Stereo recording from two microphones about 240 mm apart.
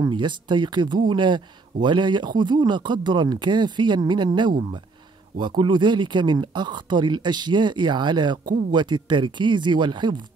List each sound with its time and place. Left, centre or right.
0.0 s speech: centre